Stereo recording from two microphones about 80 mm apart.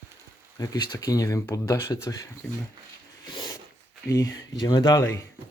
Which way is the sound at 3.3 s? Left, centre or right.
Left.